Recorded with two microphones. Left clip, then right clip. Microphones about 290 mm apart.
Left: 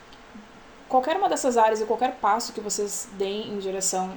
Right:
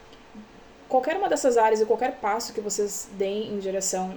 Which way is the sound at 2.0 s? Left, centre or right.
Left.